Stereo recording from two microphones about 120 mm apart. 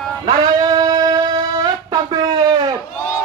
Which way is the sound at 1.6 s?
35° right (ahead or behind).